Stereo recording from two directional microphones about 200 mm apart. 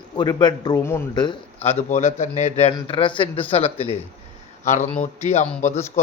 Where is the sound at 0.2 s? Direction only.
20° left (ahead or behind).